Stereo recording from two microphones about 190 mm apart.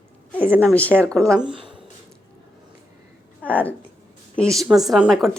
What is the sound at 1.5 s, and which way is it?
Speech, 25° right (ahead or behind).